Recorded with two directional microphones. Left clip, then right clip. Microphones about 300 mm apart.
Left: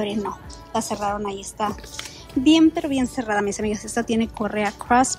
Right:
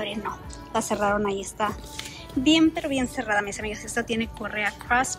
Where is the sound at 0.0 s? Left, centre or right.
Centre.